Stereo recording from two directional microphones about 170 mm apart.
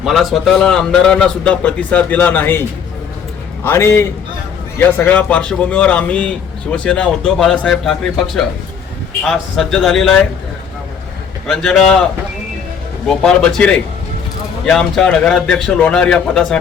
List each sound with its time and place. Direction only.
0.0 s a man's voice: centre (ahead or behind)
11.4 s a man's voice: 5° left (ahead or behind)
13.1 s a man's voice: 5° left (ahead or behind)